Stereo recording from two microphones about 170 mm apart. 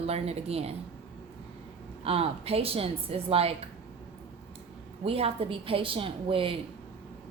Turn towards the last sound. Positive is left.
turn(degrees=-30)  # may be behind; listen again after turning